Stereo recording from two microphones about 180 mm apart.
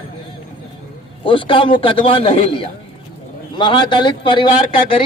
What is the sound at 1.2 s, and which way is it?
A man's voice, 30° left (ahead or behind).